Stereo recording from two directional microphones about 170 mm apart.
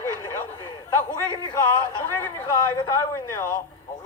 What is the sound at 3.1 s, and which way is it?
Speech, 15° left (ahead or behind).